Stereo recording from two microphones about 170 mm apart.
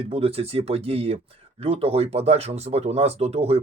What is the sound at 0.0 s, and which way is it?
Speech, 35° right (ahead or behind).